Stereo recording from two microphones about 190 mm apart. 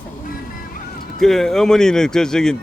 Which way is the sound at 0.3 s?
50° left (ahead or behind).